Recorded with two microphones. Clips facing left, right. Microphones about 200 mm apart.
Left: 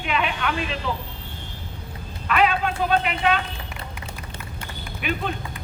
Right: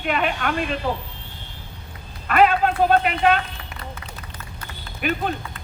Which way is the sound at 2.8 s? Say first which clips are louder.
Right 3 dB; 50° right (ahead or behind).